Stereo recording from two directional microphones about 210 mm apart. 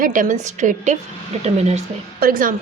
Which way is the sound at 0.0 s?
40° right (ahead or behind).